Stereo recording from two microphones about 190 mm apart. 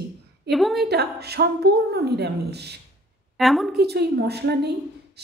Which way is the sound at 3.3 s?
Centre (ahead or behind).